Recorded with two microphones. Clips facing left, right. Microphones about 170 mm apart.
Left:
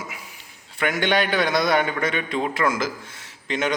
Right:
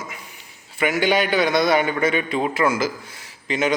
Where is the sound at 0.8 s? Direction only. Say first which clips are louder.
Right 2 dB; 5° right (ahead or behind).